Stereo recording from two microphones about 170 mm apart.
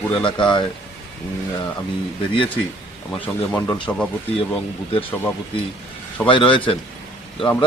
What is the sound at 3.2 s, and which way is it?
Speech, 10° left (ahead or behind).